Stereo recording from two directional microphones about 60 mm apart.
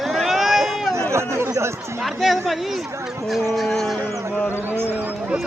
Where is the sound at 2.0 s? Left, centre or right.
Centre.